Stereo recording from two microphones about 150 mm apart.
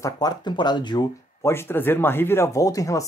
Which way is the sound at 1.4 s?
15° left (ahead or behind).